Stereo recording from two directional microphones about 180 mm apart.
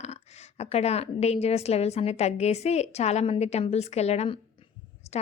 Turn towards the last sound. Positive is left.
turn(degrees=35)  # may be behind; listen again after turning